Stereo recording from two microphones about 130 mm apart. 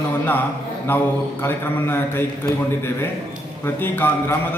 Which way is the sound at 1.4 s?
15° left (ahead or behind).